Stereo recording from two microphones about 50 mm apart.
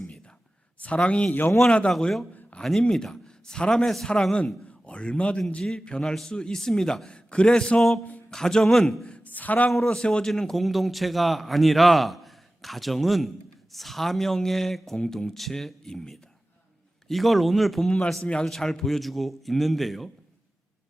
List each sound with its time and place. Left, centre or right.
0.8 s speech: left
2.6 s a man's voice: centre
4.9 s a man's voice: left; by 9.0 s centre
9.2 s speech: left
9.6 s a man's voice: centre
10.6 s a man's voice: centre
17.8 s a man's voice: centre